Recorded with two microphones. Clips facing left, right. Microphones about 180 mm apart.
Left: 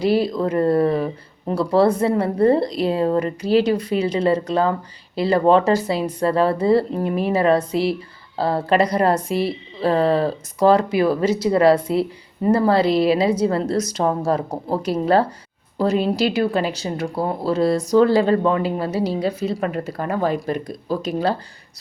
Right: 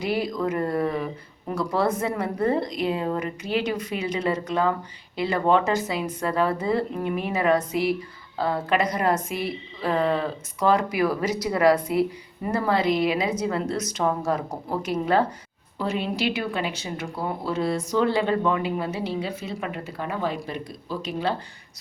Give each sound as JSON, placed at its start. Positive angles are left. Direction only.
{"t": 0.0, "sound": "speech", "side_deg": 30}